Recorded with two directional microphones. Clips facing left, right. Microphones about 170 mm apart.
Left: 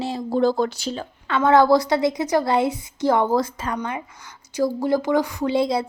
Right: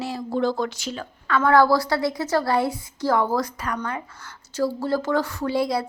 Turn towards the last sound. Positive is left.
turn(degrees=20)  # may be behind; listen again after turning